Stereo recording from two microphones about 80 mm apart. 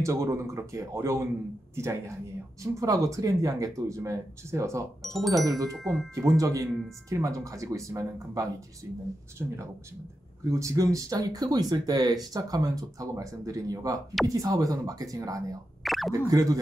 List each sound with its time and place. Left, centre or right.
0.0 s speech: right
5.0 s speech: centre
5.4 s speech: right
5.7 s speech: centre
6.1 s speech: right
10.5 s speech: right
15.8 s a sound: centre
16.1 s speech: right